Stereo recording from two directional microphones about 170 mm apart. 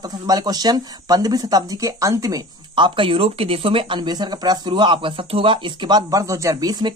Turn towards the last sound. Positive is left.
turn(degrees=-25)  # may be behind; listen again after turning